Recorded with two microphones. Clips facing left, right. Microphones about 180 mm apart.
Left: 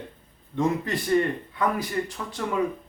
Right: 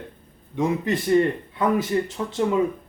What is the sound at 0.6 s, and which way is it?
Speech, 20° right (ahead or behind).